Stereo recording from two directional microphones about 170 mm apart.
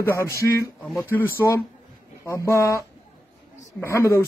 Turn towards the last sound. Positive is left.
turn(degrees=15)  # may be behind; listen again after turning